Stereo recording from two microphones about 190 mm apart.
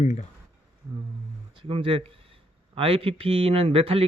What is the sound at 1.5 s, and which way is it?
A man's voice, 25° right (ahead or behind).